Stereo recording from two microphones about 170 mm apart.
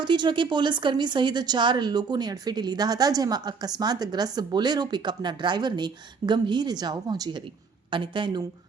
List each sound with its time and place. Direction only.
0.0 s a woman's voice: 25° right (ahead or behind)